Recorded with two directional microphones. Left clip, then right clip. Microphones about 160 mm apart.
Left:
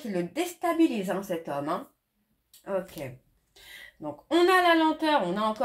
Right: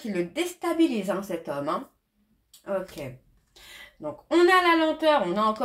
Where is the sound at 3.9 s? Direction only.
30° left (ahead or behind).